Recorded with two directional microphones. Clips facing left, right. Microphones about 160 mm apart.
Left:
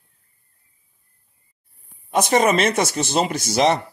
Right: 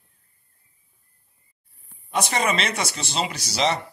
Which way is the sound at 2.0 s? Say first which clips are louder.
Left 7 dB; 45° left (ahead or behind).